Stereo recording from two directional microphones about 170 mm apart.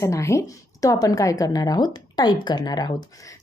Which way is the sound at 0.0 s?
15° left (ahead or behind).